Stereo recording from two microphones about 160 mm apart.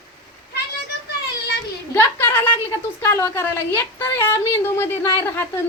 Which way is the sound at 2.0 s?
15° left (ahead or behind).